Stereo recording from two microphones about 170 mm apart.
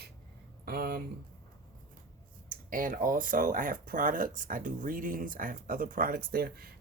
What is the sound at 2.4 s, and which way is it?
Speech, 50° right (ahead or behind).